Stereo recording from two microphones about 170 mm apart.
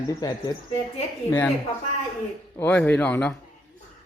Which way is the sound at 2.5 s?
10° left (ahead or behind).